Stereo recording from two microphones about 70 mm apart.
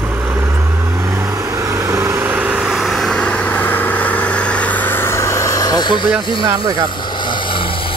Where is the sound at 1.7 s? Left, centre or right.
Right.